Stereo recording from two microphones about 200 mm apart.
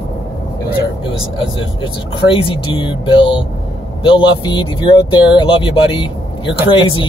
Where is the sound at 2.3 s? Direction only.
25° left (ahead or behind).